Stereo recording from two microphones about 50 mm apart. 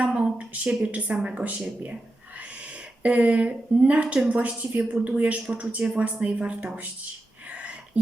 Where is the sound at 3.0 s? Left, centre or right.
Right.